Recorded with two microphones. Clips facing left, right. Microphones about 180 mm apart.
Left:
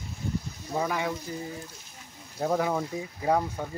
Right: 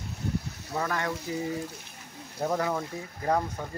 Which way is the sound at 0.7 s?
10° left (ahead or behind).